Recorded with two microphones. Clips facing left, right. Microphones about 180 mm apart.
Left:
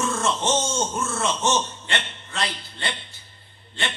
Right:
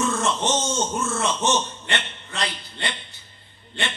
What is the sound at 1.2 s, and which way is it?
A man's voice, 15° right (ahead or behind).